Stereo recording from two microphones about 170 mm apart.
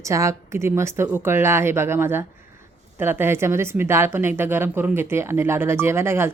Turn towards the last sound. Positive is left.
turn(degrees=-15)  # may be behind; listen again after turning